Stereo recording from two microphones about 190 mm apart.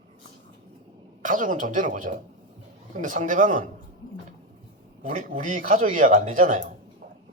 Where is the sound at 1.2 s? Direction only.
45° right (ahead or behind).